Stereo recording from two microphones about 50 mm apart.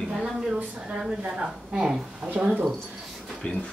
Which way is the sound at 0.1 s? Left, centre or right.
Centre.